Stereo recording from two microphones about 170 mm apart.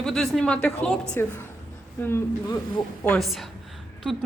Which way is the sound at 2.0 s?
20° left (ahead or behind).